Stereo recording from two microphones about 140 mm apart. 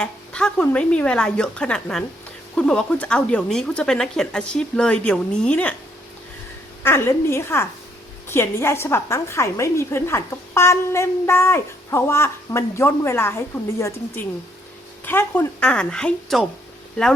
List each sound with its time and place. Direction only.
0.0 s speech: 5° left (ahead or behind)
6.8 s a woman's voice: 15° left (ahead or behind)